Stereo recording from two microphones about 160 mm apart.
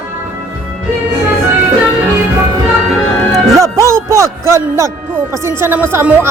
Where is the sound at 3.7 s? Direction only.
20° right (ahead or behind).